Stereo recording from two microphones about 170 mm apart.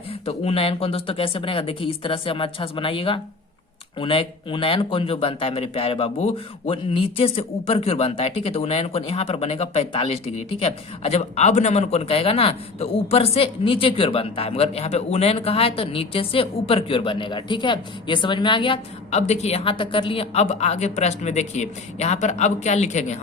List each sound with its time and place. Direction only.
0.1 s a man's voice: 35° left (ahead or behind)